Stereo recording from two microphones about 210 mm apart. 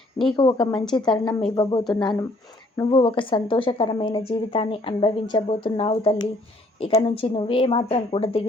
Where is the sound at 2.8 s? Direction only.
20° left (ahead or behind).